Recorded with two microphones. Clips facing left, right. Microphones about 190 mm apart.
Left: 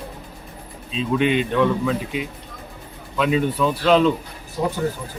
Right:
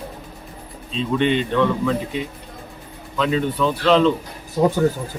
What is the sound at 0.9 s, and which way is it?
Speech, 5° left (ahead or behind).